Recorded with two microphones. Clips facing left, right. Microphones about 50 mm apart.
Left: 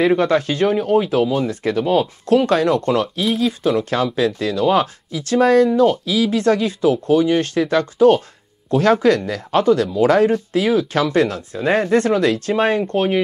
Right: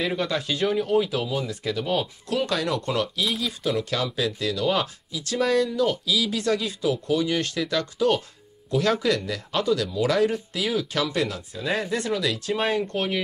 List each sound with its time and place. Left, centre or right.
0.0 s speech: left